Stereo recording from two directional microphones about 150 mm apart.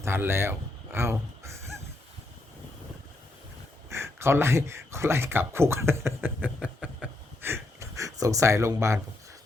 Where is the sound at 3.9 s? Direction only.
15° right (ahead or behind).